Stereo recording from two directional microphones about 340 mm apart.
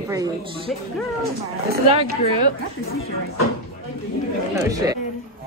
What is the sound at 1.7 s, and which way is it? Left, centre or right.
Speech, centre.